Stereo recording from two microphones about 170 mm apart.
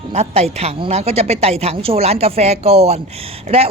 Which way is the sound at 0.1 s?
40° right (ahead or behind).